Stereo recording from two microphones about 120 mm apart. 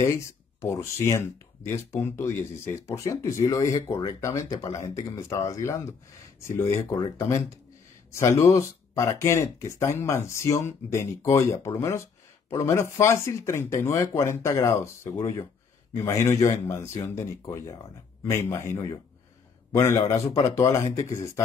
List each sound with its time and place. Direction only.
0.0 s speech: 25° left (ahead or behind)
18.2 s speech: 25° left (ahead or behind)